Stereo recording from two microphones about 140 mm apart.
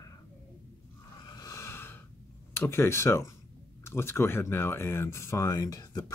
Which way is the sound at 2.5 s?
15° left (ahead or behind).